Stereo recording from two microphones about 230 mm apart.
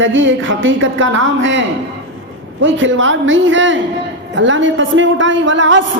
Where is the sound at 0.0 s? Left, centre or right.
Right.